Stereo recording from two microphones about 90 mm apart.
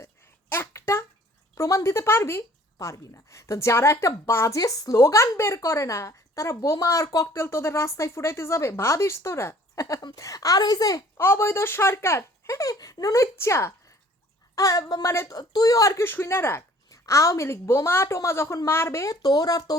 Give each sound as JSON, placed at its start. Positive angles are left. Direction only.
{"t": 0.5, "sound": "a sound", "side_deg": 30}
{"t": 1.5, "sound": "a woman's voice", "side_deg": 30}
{"t": 11.2, "sound": "a woman's voice", "side_deg": 25}
{"t": 19.2, "sound": "a woman's voice", "side_deg": 45}